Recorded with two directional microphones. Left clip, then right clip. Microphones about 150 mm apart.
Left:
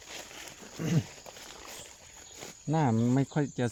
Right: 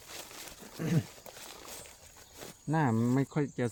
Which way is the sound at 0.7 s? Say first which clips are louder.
Left 1 dB; 35° left (ahead or behind).